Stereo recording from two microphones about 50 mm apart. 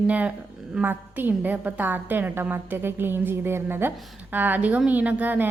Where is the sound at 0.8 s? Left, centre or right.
Right.